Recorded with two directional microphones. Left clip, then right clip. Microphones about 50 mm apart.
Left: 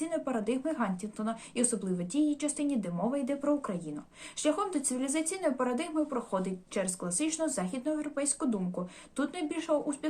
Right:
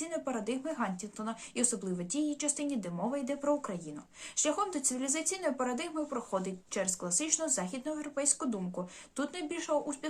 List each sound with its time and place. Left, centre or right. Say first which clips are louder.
0.0 s a woman's voice: left 3 dB; right